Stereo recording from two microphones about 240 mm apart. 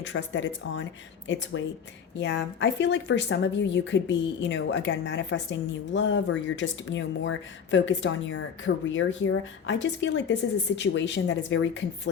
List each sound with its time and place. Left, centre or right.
0.0 s a woman's voice: left